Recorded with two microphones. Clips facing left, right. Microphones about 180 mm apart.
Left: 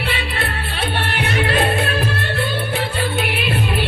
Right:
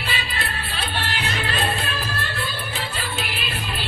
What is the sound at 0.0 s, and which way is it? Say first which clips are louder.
Music: left 6 dB; 60° left (ahead or behind).